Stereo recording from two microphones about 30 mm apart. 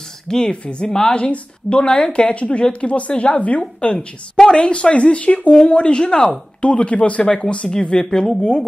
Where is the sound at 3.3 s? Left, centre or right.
Left.